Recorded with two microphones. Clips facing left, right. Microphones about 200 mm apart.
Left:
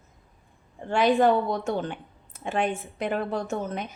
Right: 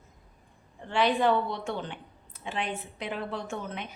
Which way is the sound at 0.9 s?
45° left (ahead or behind).